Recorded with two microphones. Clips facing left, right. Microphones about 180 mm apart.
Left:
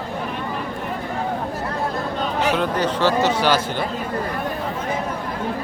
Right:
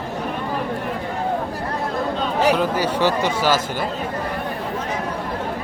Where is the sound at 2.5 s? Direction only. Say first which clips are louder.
Right 1 dB; 10° right (ahead or behind).